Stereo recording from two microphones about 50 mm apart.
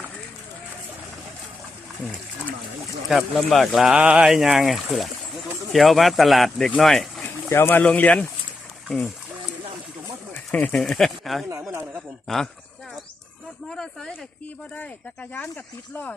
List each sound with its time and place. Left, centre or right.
3.1 s speech: centre
3.8 s speech: right
4.2 s speech: centre
7.5 s speech: left
7.8 s speech: left
10.5 s speech: left
10.9 s speech: centre
13.7 s speech: centre
15.4 s speech: left